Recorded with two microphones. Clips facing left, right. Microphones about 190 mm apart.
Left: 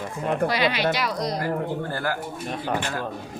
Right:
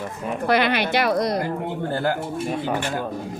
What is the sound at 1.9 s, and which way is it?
Speech, 20° right (ahead or behind).